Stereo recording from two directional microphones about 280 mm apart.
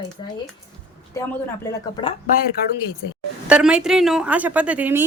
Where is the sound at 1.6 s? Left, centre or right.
Centre.